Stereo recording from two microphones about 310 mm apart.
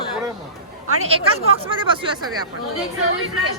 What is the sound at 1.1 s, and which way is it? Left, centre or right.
Speech, centre.